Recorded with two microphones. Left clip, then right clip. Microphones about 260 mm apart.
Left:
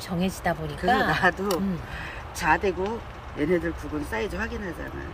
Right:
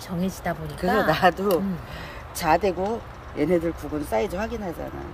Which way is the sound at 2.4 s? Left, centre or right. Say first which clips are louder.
Right 2 dB; right.